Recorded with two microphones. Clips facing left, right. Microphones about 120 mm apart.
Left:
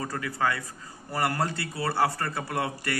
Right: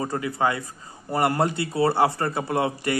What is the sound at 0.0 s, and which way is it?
A man's voice, 25° right (ahead or behind).